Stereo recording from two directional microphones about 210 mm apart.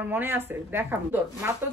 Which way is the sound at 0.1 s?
10° right (ahead or behind).